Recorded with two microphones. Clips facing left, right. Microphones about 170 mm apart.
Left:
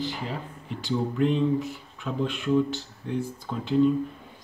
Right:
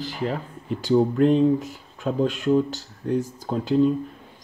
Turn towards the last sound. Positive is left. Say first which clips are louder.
# right 5 dB
turn(degrees=-40)  # may be behind; listen again after turning